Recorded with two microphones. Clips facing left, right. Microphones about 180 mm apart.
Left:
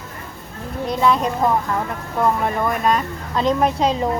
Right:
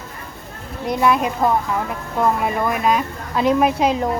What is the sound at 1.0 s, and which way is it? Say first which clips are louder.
Speech: even; 10° right (ahead or behind).